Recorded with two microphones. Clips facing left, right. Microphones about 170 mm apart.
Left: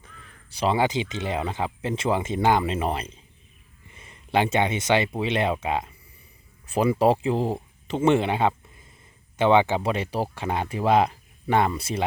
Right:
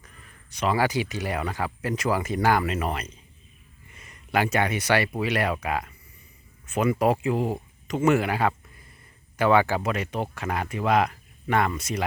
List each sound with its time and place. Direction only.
0.5 s speech: 30° left (ahead or behind)